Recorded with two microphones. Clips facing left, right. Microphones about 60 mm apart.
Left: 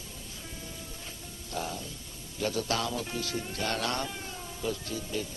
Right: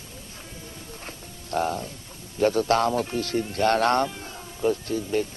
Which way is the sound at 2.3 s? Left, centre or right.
Right.